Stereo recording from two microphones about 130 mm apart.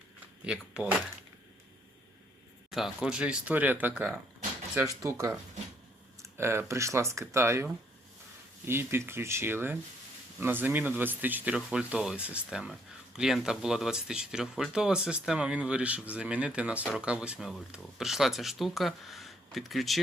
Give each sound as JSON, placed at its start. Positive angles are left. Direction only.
{"t": 0.4, "sound": "speech", "side_deg": -5}
{"t": 2.6, "sound": "speech", "side_deg": 0}